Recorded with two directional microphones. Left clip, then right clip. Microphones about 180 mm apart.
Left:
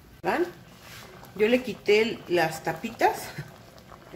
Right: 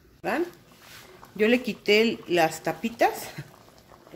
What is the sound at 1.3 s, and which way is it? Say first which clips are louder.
Speech: even; 55° right (ahead or behind).